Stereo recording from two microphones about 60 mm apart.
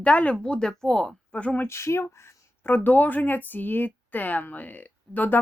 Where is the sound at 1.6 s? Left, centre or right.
Left.